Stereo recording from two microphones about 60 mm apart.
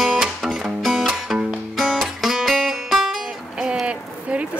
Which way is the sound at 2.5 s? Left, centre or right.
Centre.